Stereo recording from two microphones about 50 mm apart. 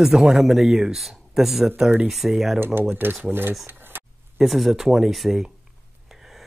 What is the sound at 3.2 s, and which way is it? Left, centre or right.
Speech, right.